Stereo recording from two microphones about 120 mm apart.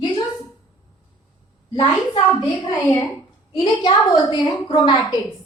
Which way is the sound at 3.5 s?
40° left (ahead or behind).